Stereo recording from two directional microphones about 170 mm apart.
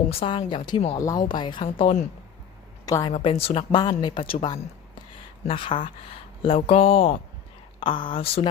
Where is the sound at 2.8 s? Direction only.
20° left (ahead or behind).